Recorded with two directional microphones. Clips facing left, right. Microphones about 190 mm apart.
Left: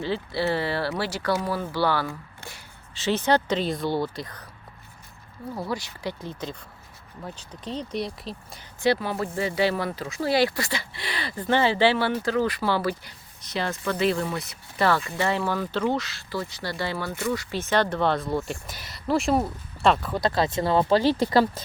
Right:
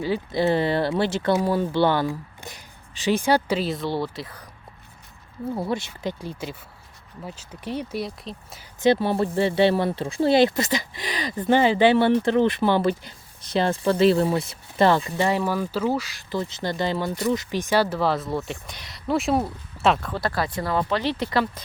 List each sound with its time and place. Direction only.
0.0 s speech: 15° right (ahead or behind)
5.5 s speech: 25° right (ahead or behind); by 8.6 s centre (ahead or behind)
8.8 s speech: 25° right (ahead or behind); by 20.1 s centre (ahead or behind)
20.1 s speech: 20° left (ahead or behind)